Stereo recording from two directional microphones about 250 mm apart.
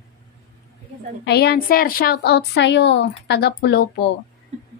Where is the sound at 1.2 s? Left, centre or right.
Left.